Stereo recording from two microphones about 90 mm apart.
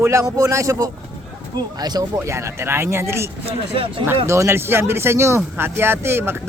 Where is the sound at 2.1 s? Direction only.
30° right (ahead or behind).